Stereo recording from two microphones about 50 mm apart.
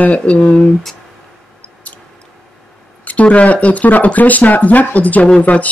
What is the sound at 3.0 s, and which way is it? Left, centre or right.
Speech, left.